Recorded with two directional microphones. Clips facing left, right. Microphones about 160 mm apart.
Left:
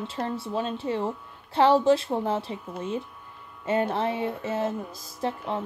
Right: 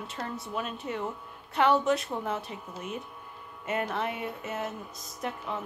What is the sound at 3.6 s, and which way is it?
Speech, 30° left (ahead or behind).